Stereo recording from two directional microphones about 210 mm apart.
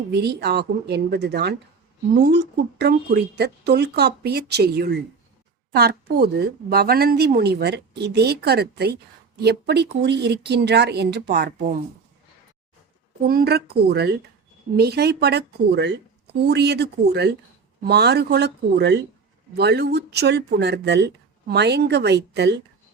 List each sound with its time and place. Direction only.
0.1 s a woman's voice: 50° right (ahead or behind)
13.2 s a woman's voice: 45° right (ahead or behind)